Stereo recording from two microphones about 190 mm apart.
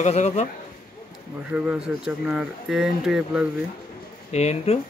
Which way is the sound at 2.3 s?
5° right (ahead or behind).